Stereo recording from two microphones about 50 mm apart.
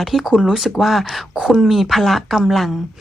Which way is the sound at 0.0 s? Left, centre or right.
Centre.